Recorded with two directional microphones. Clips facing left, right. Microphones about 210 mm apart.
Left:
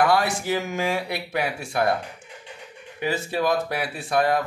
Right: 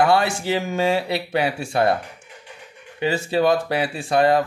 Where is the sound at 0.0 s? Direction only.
25° right (ahead or behind).